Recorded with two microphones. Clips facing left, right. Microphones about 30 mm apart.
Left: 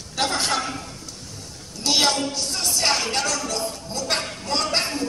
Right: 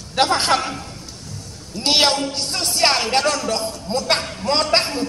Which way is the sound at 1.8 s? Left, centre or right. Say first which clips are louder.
Right 3 dB; right.